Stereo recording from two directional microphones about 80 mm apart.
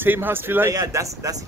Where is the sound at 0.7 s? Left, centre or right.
Right.